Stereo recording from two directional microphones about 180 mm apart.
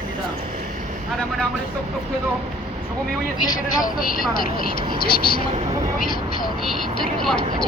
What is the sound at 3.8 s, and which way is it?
Speech, 50° left (ahead or behind).